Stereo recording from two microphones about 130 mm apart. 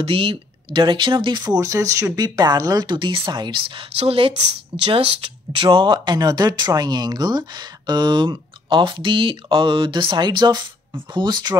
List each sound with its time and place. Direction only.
0.0 s speech: 45° right (ahead or behind)